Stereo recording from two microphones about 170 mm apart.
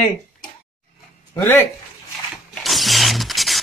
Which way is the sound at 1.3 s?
15° left (ahead or behind).